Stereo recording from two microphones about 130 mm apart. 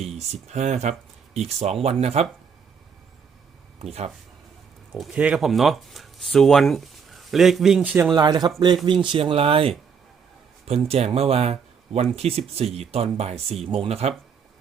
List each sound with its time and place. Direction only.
0.0 s speech: 55° right (ahead or behind)
5.1 s speech: 10° right (ahead or behind)
8.1 s speech: 30° right (ahead or behind); by 9.7 s 45° right (ahead or behind)
10.8 s speech: 50° right (ahead or behind)